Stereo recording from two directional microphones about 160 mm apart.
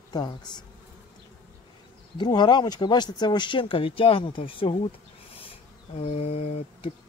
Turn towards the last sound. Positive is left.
turn(degrees=40)  # may be behind; listen again after turning